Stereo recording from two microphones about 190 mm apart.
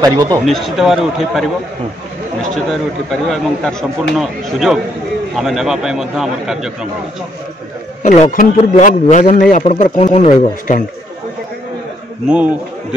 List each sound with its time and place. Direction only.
0.0 s speech: 20° right (ahead or behind)
0.5 s a man's voice: centre (ahead or behind)
2.5 s a man's voice: 5° left (ahead or behind)
8.0 s a man's voice: 35° left (ahead or behind)
12.3 s speech: 5° right (ahead or behind)